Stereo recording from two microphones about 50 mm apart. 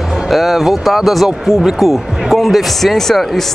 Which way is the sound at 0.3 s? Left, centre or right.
Centre.